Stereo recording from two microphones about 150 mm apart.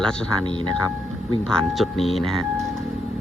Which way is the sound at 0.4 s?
30° right (ahead or behind).